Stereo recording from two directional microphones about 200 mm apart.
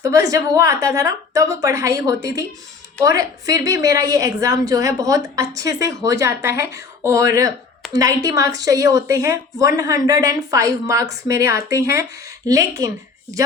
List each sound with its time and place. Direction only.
0.0 s a woman's voice: 15° right (ahead or behind)